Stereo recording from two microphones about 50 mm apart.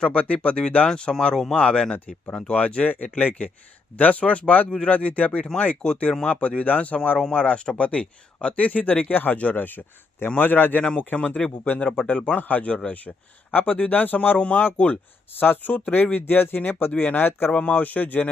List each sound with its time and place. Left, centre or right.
0.0 s a man's voice: left
15.4 s a man's voice: left
17.5 s a man's voice: left